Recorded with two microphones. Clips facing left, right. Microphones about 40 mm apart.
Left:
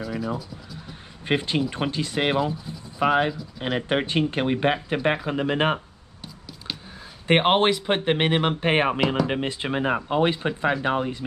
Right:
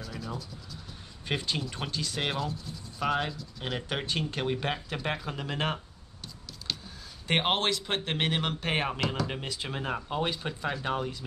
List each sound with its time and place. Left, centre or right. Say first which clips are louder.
0.0 s a sound: left 10 dB; centre
1.2 s speech: left 8 dB; left
7.2 s speech: left 8 dB; left
9.0 s speech: left 8 dB; centre
9.3 s speech: left 9 dB; left